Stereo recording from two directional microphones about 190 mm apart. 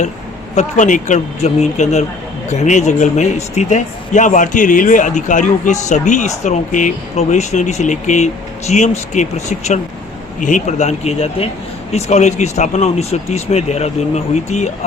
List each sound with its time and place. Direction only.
0.5 s speech: 40° left (ahead or behind)